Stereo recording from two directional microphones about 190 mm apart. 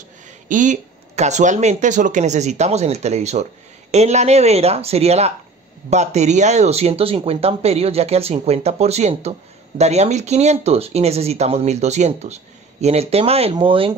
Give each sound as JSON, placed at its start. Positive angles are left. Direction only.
{"t": 0.5, "sound": "speech", "side_deg": -40}